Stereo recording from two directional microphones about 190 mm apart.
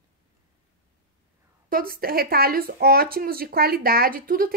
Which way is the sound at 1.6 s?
50° right (ahead or behind).